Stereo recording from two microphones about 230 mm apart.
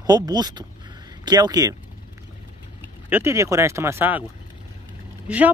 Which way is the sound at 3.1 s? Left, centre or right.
Centre.